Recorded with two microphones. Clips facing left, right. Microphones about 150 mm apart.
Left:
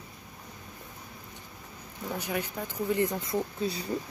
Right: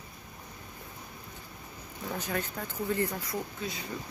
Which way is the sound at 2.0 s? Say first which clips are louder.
Left 1 dB; 15° left (ahead or behind).